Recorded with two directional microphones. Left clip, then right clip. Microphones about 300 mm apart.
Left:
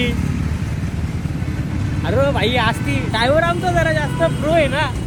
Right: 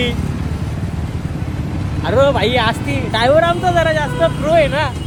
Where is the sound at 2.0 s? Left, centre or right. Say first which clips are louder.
Right 5 dB; centre.